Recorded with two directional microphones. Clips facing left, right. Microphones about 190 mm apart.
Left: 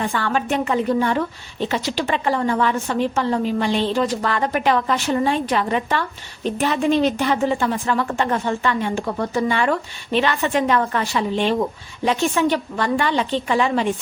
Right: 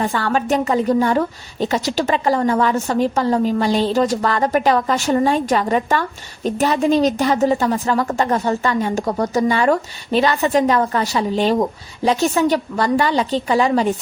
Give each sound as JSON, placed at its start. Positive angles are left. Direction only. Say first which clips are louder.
{"t": 0.0, "sound": "a woman's voice", "louder": "right 3 dB", "side_deg": -40}